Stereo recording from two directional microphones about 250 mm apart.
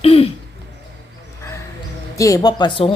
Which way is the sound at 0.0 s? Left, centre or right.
Left.